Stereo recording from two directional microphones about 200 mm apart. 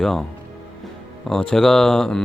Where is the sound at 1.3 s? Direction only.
5° left (ahead or behind).